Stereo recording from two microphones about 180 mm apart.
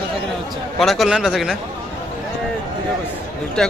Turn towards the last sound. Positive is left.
turn(degrees=0)  # may be behind; listen again after turning